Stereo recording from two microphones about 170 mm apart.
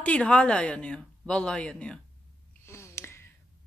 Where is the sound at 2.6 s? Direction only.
15° left (ahead or behind).